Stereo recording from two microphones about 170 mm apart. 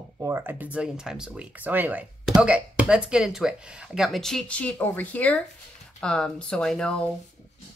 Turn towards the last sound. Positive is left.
turn(degrees=5)  # may be behind; listen again after turning